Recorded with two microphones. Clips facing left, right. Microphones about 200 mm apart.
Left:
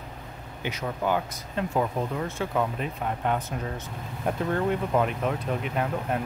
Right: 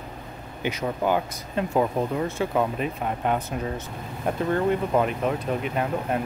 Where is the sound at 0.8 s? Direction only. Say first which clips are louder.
Right 2 dB; 20° right (ahead or behind).